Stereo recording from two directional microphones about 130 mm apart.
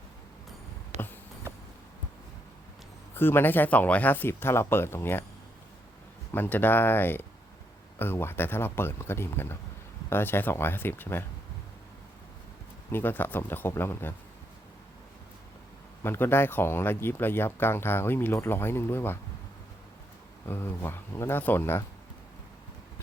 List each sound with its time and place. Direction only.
0.9 s a sound: 60° right (ahead or behind)
3.2 s speech: 15° left (ahead or behind)
6.3 s speech: 15° left (ahead or behind)
12.9 s speech: 15° left (ahead or behind)
16.0 s speech: 15° left (ahead or behind)
20.5 s speech: 15° left (ahead or behind)